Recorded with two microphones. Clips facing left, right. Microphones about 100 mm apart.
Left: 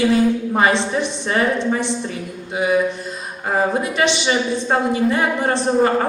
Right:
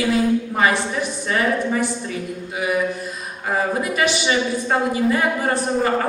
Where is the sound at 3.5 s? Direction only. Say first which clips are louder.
Left 2 dB; 25° left (ahead or behind).